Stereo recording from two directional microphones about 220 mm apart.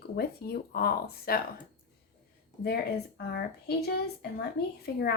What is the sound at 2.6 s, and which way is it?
A woman's voice, 45° left (ahead or behind).